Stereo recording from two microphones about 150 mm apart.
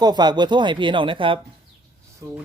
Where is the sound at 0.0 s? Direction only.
25° right (ahead or behind).